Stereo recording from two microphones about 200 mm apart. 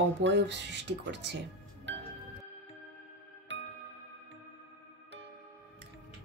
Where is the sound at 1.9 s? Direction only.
65° right (ahead or behind).